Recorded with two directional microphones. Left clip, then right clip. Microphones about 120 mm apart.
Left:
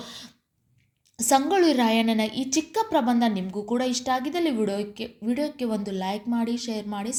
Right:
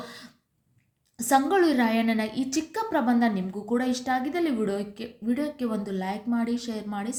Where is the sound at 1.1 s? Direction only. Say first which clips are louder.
Left 1 dB; 25° left (ahead or behind).